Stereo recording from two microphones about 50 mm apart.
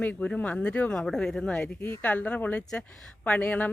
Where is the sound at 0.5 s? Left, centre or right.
Left.